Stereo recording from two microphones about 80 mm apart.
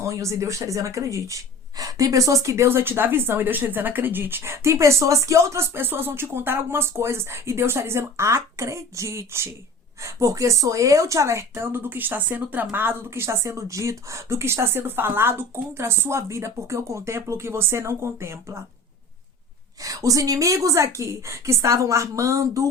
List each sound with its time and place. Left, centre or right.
0.0 s speech: right
19.8 s speech: right